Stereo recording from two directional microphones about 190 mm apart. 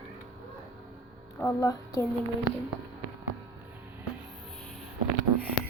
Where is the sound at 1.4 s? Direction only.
15° left (ahead or behind).